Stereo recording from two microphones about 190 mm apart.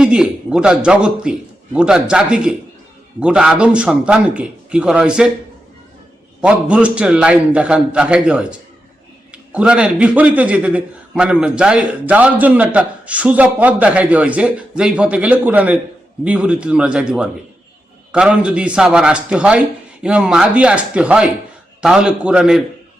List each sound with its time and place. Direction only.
0.0 s a man's voice: 5° right (ahead or behind)
6.4 s a man's voice: 5° right (ahead or behind)